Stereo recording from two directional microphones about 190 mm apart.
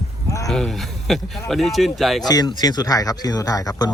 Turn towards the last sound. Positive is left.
turn(degrees=20)  # may be behind; listen again after turning